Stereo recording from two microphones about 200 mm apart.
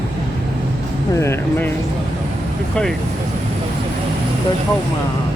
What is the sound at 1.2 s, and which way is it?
Speech, 10° left (ahead or behind).